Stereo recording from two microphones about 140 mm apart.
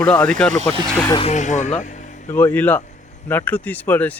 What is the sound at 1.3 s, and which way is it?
Speech, 60° left (ahead or behind).